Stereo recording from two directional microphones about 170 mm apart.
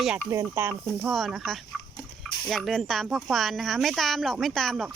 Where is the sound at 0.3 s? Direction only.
15° right (ahead or behind).